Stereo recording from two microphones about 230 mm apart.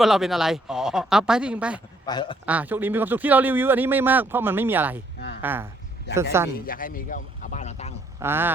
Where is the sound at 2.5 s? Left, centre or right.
Centre.